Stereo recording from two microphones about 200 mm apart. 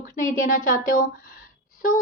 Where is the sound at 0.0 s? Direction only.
45° left (ahead or behind).